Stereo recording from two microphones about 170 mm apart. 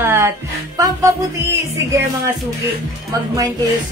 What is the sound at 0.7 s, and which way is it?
Music, 20° right (ahead or behind).